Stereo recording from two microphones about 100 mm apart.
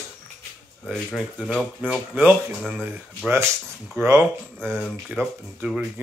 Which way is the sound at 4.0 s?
25° right (ahead or behind).